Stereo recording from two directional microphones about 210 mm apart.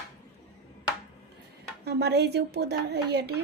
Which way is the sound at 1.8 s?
50° right (ahead or behind).